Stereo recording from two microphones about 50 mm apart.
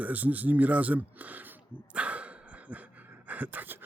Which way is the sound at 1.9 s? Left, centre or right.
Right.